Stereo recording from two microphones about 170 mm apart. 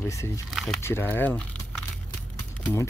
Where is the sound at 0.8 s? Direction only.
15° left (ahead or behind).